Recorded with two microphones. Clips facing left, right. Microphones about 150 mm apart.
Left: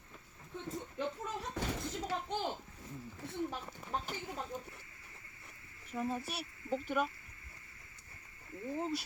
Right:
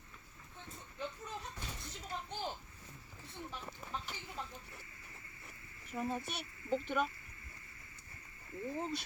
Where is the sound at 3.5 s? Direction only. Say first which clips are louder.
Left 4 dB; 50° left (ahead or behind).